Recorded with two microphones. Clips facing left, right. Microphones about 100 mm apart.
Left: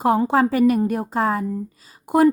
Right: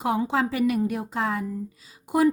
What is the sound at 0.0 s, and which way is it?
Speech, 45° left (ahead or behind).